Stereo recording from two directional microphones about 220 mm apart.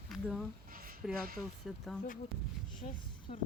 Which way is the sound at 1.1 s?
40° right (ahead or behind).